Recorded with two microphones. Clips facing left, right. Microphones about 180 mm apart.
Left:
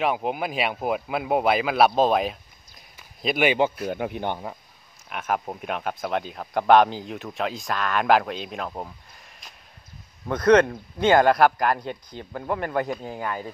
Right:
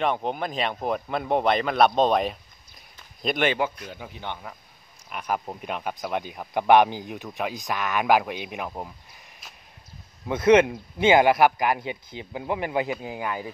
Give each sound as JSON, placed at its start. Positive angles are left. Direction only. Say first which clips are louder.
{"t": 0.0, "sound": "speech", "louder": "left 1 dB", "side_deg": 5}
{"t": 3.0, "sound": "a sound", "louder": "left 2 dB", "side_deg": 5}
{"t": 3.8, "sound": "speech", "louder": "left 9 dB", "side_deg": 55}
{"t": 5.1, "sound": "speech", "louder": "left 2 dB", "side_deg": 0}
{"t": 7.7, "sound": "speech", "louder": "left 1 dB", "side_deg": -15}